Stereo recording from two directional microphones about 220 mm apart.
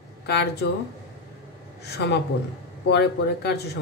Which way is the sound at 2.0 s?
50° left (ahead or behind).